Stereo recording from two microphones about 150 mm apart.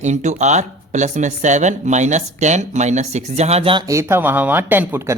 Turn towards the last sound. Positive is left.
turn(degrees=-15)  # may be behind; listen again after turning